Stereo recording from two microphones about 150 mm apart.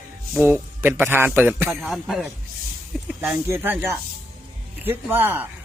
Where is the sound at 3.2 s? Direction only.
15° right (ahead or behind).